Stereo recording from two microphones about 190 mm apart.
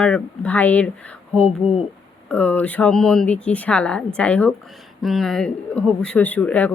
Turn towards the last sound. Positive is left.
turn(degrees=5)  # may be behind; listen again after turning